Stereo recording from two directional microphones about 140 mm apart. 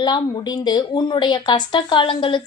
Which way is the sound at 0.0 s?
30° left (ahead or behind).